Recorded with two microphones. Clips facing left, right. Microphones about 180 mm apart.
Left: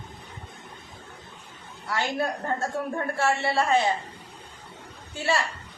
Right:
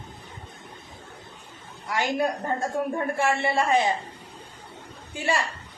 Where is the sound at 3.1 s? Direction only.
15° right (ahead or behind).